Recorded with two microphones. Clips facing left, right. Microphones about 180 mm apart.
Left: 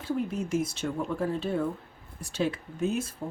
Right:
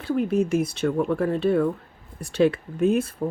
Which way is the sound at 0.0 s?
65° right (ahead or behind).